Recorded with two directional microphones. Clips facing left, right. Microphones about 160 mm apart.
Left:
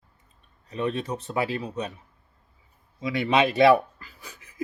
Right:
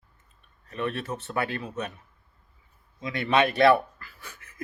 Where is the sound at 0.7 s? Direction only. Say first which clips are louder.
Left 3 dB; 15° left (ahead or behind).